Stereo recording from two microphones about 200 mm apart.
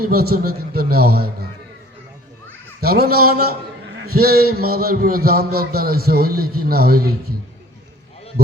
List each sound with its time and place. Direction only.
0.0 s a man's voice: 50° right (ahead or behind)
2.8 s a man's voice: 50° right (ahead or behind)